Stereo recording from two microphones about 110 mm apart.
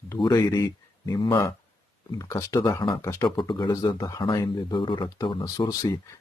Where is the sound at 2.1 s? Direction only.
30° left (ahead or behind).